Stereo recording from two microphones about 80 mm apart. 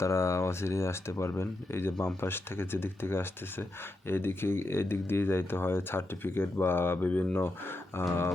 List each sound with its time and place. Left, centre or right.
0.0 s speech: left